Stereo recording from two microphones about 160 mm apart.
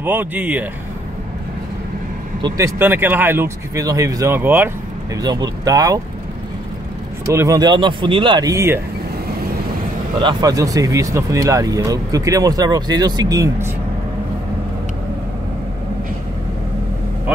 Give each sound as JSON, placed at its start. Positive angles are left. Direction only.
{"t": 0.0, "sound": "speech", "side_deg": -10}
{"t": 2.4, "sound": "speech", "side_deg": -20}
{"t": 5.1, "sound": "speech", "side_deg": -25}
{"t": 7.2, "sound": "speech", "side_deg": -20}
{"t": 10.2, "sound": "speech", "side_deg": -20}